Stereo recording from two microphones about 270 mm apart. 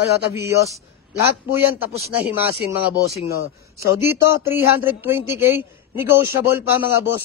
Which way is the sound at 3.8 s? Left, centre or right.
Centre.